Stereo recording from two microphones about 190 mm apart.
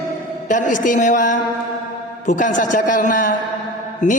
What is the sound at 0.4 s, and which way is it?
A woman's voice, 40° left (ahead or behind).